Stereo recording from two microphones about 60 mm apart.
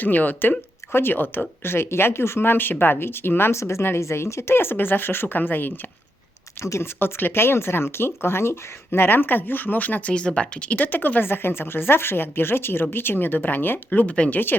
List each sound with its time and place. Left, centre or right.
0.0 s speech: left
6.6 s speech: left
7.0 s speech: left
10.8 s speech: left